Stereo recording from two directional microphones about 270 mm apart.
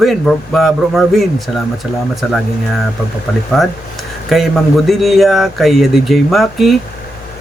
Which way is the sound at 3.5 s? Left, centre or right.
Centre.